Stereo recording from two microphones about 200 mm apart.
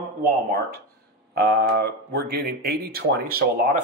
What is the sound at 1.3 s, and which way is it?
Speech, 50° right (ahead or behind).